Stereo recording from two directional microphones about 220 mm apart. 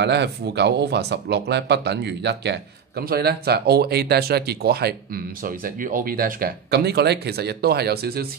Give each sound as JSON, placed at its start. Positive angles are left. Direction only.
{"t": 0.0, "sound": "speech", "side_deg": -50}